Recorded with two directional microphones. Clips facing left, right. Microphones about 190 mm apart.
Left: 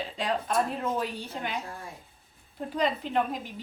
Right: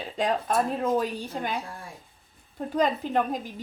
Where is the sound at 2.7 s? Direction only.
45° right (ahead or behind).